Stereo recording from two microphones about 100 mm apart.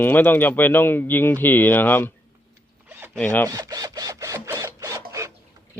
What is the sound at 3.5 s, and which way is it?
Rub, 40° right (ahead or behind).